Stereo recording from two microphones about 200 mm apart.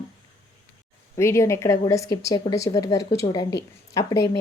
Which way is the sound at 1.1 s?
15° left (ahead or behind).